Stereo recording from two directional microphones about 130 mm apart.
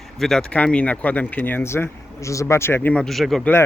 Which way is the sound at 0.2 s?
5° left (ahead or behind).